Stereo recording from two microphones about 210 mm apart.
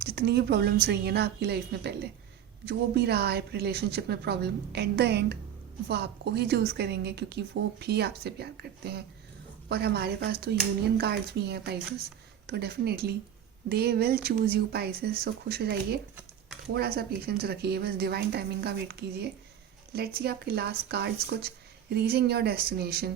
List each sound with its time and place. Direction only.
0.0 s a woman's voice: 45° right (ahead or behind)